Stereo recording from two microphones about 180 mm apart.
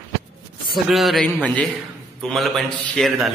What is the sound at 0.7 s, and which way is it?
A man's voice, centre (ahead or behind).